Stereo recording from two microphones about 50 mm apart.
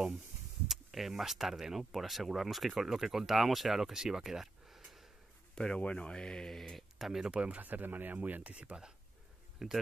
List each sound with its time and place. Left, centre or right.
0.7 s speech: centre
5.5 s speech: centre
7.0 s speech: centre
7.2 s speech: right
9.6 s speech: centre